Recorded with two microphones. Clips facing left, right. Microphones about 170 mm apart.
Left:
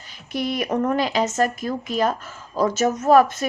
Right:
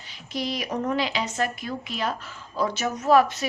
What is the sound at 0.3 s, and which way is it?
Speech, 55° left (ahead or behind).